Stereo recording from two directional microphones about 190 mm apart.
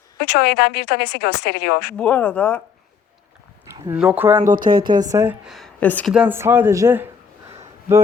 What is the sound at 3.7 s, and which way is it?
Speech, 10° right (ahead or behind).